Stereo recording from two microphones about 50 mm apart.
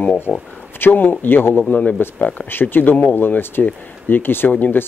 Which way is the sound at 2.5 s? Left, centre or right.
Left.